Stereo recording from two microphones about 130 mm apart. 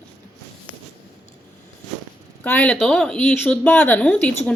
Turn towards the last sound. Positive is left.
turn(degrees=10)  # may be behind; listen again after turning